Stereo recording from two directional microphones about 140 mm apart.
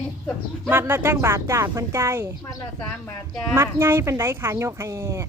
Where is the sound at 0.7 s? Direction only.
15° right (ahead or behind).